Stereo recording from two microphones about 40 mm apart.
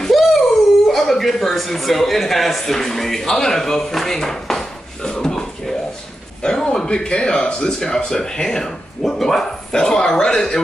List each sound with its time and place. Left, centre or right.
0.1 s dog: centre
0.8 s a man's voice: centre
5.1 s dog: centre
6.4 s speech: centre